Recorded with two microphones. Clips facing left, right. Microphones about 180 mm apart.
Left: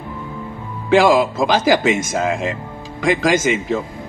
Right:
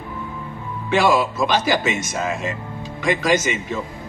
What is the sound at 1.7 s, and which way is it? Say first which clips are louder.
Speech: left 6 dB; 50° left (ahead or behind).